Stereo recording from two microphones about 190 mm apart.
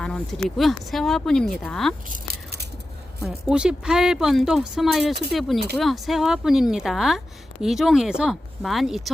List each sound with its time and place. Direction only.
0.0 s speech: 5° left (ahead or behind)
2.0 s a sound: 50° right (ahead or behind)
3.2 s speech: 5° right (ahead or behind)